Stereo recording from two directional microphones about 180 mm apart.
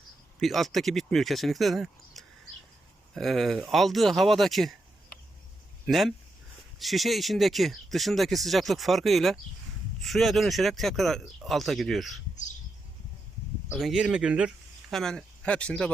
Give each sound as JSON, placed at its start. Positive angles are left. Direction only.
{"t": 0.3, "sound": "speech", "side_deg": 0}
{"t": 5.8, "sound": "speech", "side_deg": 0}
{"t": 13.7, "sound": "speech", "side_deg": 0}